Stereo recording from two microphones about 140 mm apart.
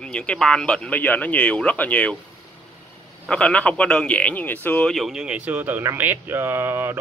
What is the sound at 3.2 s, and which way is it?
A man's voice, 5° left (ahead or behind).